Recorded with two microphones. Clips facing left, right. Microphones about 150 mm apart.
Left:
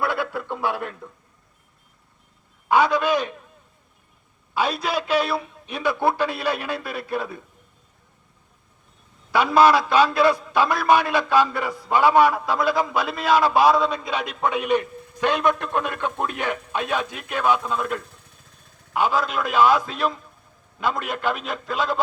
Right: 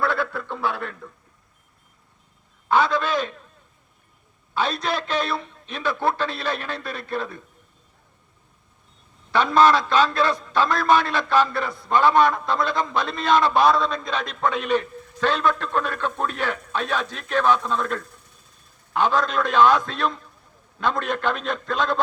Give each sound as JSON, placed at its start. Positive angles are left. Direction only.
{"t": 0.0, "sound": "a sound", "side_deg": 15}
{"t": 2.6, "sound": "a man's voice", "side_deg": 10}
{"t": 4.5, "sound": "a man's voice", "side_deg": 10}
{"t": 9.3, "sound": "a man's voice", "side_deg": 10}